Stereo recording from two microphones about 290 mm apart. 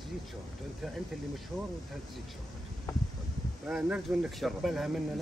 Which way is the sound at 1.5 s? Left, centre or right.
Centre.